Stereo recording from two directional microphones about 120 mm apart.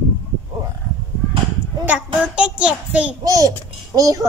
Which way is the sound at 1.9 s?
10° right (ahead or behind).